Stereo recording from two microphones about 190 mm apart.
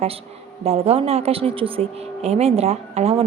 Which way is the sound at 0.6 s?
35° right (ahead or behind).